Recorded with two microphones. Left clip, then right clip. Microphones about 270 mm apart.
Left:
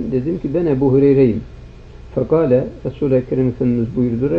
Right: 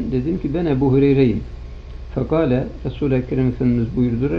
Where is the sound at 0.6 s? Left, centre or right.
Right.